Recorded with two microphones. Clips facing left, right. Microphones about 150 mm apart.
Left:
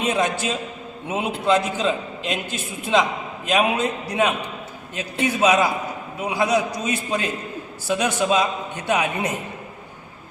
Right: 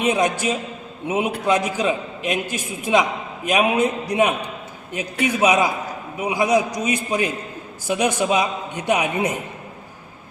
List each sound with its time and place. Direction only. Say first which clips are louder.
0.0 s a man's voice: right 2 dB; 15° right (ahead or behind)